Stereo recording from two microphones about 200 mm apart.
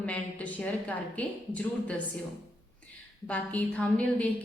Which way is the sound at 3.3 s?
5° left (ahead or behind).